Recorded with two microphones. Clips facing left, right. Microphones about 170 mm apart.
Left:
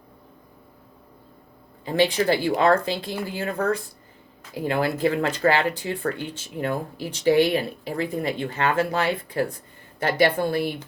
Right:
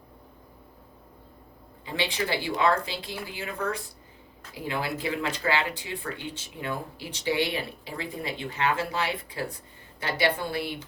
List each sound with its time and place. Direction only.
1.8 s speech: 45° left (ahead or behind)